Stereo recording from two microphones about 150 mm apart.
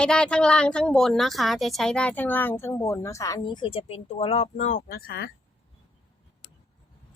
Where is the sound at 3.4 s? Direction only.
35° left (ahead or behind); by 4.8 s 50° left (ahead or behind).